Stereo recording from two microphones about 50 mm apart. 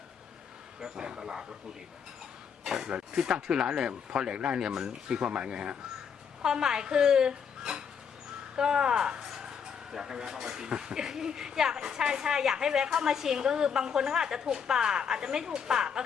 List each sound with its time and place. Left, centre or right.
0.8 s speech: centre
2.6 s speech: centre